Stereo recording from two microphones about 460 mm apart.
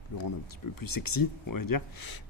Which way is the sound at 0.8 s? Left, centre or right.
Left.